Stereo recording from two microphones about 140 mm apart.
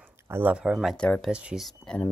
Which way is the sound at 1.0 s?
5° left (ahead or behind).